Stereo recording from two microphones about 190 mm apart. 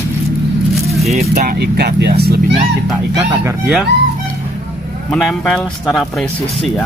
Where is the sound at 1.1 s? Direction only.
35° right (ahead or behind).